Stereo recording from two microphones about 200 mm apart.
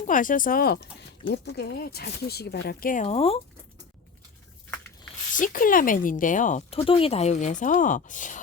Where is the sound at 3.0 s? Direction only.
30° left (ahead or behind).